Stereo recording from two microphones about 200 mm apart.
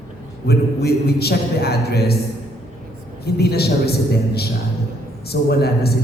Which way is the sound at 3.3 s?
55° left (ahead or behind).